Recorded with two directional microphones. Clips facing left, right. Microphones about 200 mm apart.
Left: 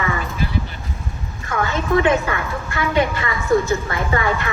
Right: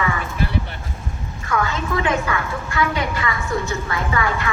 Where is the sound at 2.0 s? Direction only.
25° left (ahead or behind).